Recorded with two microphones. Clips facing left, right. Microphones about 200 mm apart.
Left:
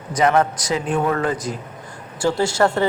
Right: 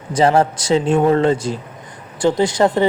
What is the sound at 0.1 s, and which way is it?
Speech, 30° right (ahead or behind).